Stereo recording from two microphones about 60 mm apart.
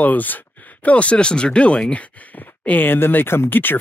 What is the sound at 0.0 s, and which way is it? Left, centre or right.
Speech, left.